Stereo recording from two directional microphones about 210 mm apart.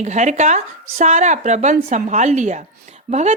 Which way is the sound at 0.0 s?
35° right (ahead or behind).